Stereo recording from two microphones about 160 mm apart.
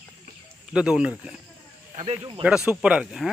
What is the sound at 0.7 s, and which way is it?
Speech, 5° right (ahead or behind).